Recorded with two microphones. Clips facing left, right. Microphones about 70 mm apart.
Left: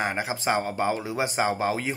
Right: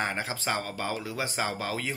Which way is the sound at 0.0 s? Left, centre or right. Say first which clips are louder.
Left 4 dB; centre.